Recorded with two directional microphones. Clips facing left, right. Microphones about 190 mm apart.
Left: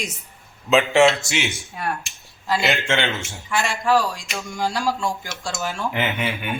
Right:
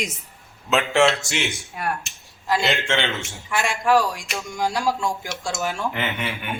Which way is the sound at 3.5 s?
15° right (ahead or behind).